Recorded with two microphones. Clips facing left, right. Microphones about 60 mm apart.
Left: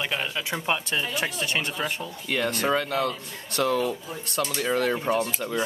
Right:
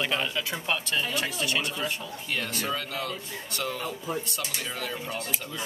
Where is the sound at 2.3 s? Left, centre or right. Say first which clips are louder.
Left 7 dB; left.